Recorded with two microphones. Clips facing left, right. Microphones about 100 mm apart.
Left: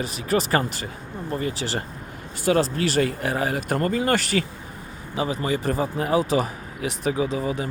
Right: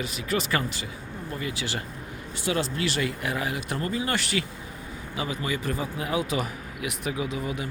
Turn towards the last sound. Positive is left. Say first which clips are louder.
# left 6 dB
turn(degrees=35)  # may be behind; listen again after turning